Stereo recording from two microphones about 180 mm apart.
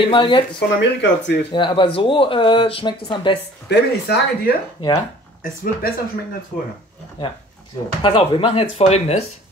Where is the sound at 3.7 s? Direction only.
70° left (ahead or behind).